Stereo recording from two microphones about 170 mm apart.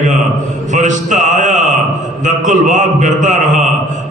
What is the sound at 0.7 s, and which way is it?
Mantra, 45° right (ahead or behind).